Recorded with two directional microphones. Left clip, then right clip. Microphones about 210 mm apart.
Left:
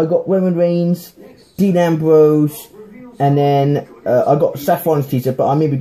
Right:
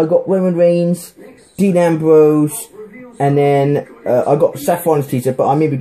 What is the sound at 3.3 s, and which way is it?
Speech, 10° left (ahead or behind).